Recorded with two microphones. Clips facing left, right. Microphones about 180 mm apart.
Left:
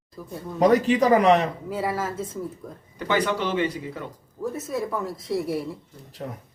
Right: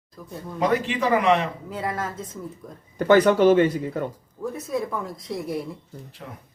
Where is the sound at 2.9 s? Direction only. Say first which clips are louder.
Right 8 dB; 45° right (ahead or behind).